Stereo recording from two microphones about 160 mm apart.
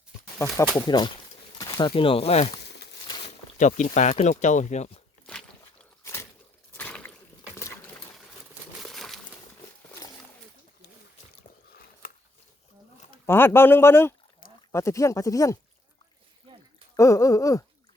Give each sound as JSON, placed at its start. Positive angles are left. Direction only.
{"t": 0.3, "sound": "speech", "side_deg": 20}
{"t": 1.5, "sound": "pigeon", "side_deg": 25}
{"t": 1.9, "sound": "speech", "side_deg": 35}
{"t": 2.6, "sound": "a sound", "side_deg": 90}
{"t": 3.2, "sound": "speech", "side_deg": 50}
{"t": 6.0, "sound": "a sound", "side_deg": 15}
{"t": 8.8, "sound": "a sound", "side_deg": 0}
{"t": 13.2, "sound": "a man's voice", "side_deg": 15}
{"t": 17.0, "sound": "speech", "side_deg": 20}